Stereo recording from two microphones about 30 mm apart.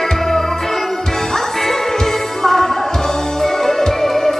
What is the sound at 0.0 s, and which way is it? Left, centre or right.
Music, centre.